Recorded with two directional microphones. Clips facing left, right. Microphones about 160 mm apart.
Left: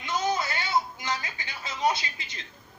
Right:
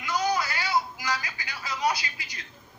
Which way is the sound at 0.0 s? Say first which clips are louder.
Right 1 dB; 25° left (ahead or behind).